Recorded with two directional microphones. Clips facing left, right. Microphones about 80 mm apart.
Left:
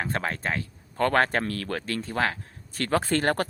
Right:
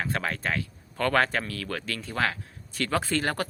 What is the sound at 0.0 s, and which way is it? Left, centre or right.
Speech, left.